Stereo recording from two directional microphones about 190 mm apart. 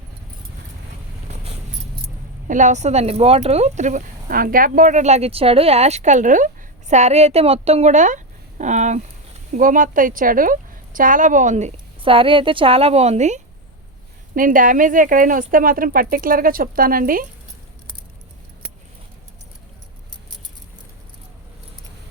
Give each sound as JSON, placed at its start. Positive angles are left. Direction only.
{"t": 2.5, "sound": "speech", "side_deg": -40}